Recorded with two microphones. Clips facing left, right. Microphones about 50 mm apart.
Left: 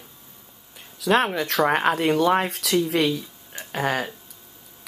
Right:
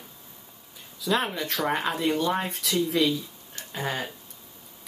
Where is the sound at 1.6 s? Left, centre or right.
Left.